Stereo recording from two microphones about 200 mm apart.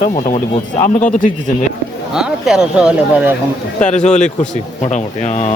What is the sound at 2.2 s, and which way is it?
Speech, 5° right (ahead or behind).